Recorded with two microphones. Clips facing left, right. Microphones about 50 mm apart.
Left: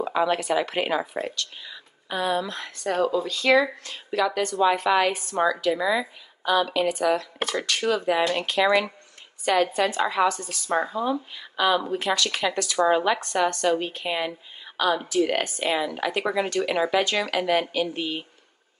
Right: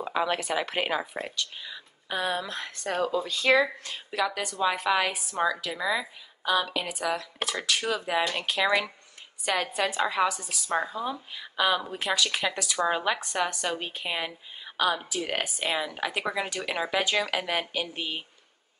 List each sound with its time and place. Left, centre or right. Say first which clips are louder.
1.1 s speech: left 4 dB; centre
2.4 s speech: left 4 dB; centre
4.1 s speech: left 5 dB; centre
10.7 s speech: left 5 dB; centre